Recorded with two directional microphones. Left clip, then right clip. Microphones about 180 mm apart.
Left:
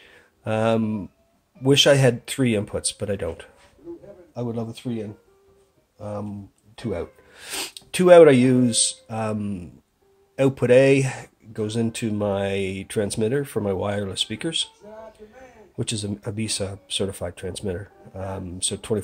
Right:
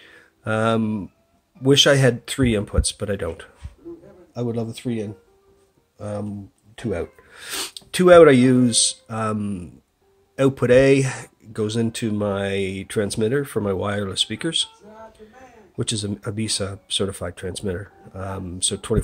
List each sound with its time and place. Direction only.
0.0 s a sound: 10° right (ahead or behind)
1.6 s speech: 10° right (ahead or behind)
4.3 s speech: 30° right (ahead or behind)
6.8 s speech: 10° right (ahead or behind)
15.8 s speech: 10° right (ahead or behind)